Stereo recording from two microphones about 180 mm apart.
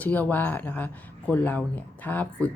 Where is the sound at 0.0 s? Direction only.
10° left (ahead or behind).